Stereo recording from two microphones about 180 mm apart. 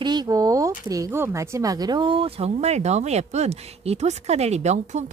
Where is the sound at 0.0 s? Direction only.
25° right (ahead or behind).